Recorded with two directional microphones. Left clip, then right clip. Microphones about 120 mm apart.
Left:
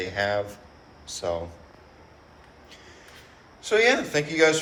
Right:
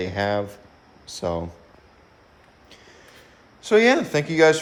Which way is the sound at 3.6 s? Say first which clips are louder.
Right 3 dB; 60° right (ahead or behind).